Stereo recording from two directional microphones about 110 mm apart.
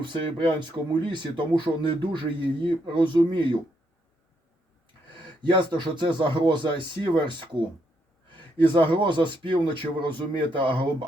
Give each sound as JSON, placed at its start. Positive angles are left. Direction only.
{"t": 0.0, "sound": "speech", "side_deg": -45}
{"t": 5.4, "sound": "speech", "side_deg": -45}
{"t": 8.9, "sound": "speech", "side_deg": -45}